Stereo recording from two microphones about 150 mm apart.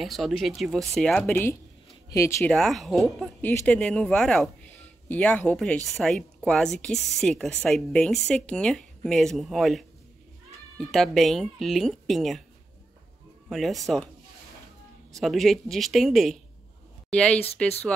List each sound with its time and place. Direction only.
0.0 s speech: centre (ahead or behind)
1.3 s speech: 15° left (ahead or behind)
2.5 s speech: centre (ahead or behind)
10.9 s speech: centre (ahead or behind)
13.5 s speech: centre (ahead or behind)
15.1 s speech: centre (ahead or behind)